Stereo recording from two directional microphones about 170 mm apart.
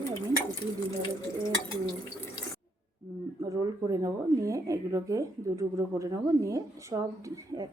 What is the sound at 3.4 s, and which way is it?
Speech, 20° right (ahead or behind).